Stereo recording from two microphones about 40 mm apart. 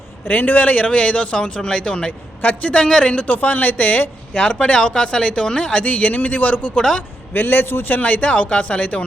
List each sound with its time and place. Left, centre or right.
0.3 s speech: left
2.4 s speech: left
2.7 s speech: left
3.2 s speech: left
4.6 s speech: left
5.8 s speech: left
7.3 s a man's voice: left
7.9 s speech: left